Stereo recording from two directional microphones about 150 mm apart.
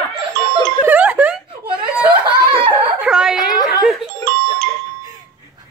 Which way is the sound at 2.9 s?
5° right (ahead or behind).